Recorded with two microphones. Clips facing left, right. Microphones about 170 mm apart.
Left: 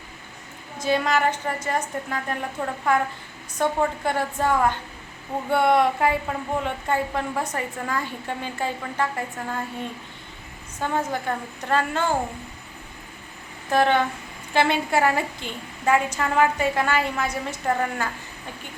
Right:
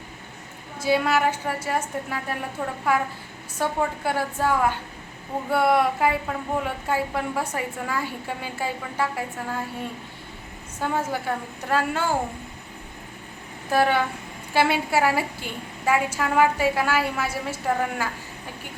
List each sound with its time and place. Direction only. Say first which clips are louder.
0.8 s a woman's voice: right 1 dB; 5° right (ahead or behind)
10.8 s a woman's voice: even; 10° right (ahead or behind)
13.7 s a woman's voice: left 1 dB; 10° right (ahead or behind)